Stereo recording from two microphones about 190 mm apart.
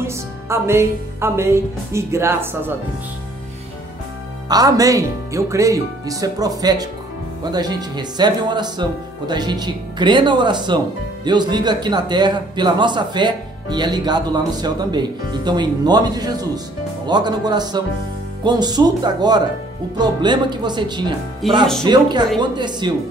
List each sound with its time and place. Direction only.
0.0 s music: 15° right (ahead or behind)
4.5 s speech: 20° right (ahead or behind)
21.4 s speech: centre (ahead or behind)
21.8 s speech: 25° right (ahead or behind)